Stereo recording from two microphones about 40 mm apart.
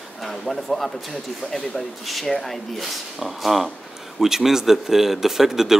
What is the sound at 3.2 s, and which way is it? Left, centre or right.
Speech, centre.